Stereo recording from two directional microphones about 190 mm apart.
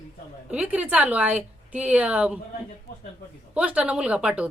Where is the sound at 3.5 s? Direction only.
5° right (ahead or behind).